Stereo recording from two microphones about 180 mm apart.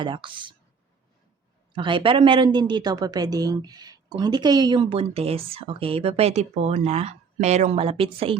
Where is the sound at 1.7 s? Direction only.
25° right (ahead or behind).